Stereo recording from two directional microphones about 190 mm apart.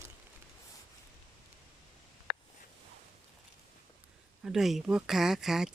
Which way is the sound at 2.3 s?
55° left (ahead or behind).